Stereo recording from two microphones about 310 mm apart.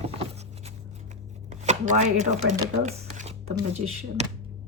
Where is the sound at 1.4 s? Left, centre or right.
Right.